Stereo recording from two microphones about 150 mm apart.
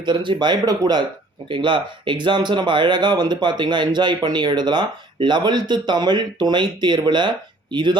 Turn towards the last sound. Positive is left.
turn(degrees=-30)  # may be behind; listen again after turning